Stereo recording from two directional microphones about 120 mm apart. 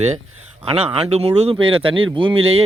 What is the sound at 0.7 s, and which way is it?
Speech, 50° right (ahead or behind).